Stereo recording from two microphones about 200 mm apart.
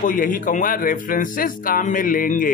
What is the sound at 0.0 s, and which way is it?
Music, 45° left (ahead or behind).